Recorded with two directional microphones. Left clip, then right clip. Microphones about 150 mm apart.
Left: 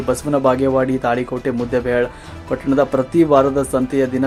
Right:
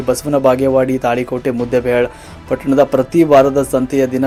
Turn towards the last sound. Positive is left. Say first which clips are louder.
# right 3 dB
turn(degrees=-10)  # may be behind; listen again after turning